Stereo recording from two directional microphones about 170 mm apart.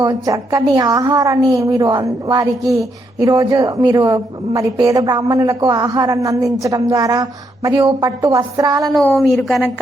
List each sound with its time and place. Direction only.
0.0 s a woman's voice: 20° right (ahead or behind)
9.1 s speech: centre (ahead or behind)